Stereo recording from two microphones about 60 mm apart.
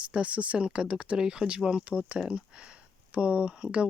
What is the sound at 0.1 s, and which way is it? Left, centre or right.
Speech, right.